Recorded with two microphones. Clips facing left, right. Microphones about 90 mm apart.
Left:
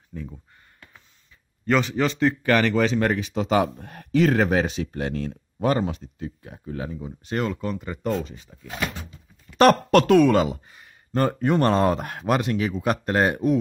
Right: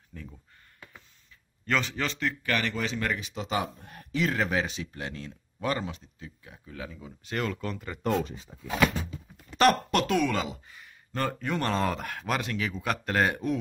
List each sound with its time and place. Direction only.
0.1 s speech: 10° left (ahead or behind)
1.7 s a man's voice: 15° left (ahead or behind)
2.5 s speech: 55° left (ahead or behind); by 7.1 s 40° left (ahead or behind)
7.1 s speech: 25° left (ahead or behind)
7.6 s a man's voice: 10° left (ahead or behind)
9.6 s speech: 55° left (ahead or behind)
10.7 s speech: 35° left (ahead or behind)
11.9 s speech: 30° left (ahead or behind)